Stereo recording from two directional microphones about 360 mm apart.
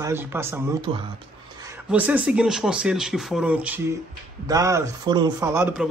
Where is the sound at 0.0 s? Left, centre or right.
Centre.